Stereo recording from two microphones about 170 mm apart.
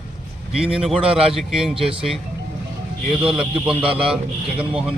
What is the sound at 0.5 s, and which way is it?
Speech, 5° right (ahead or behind).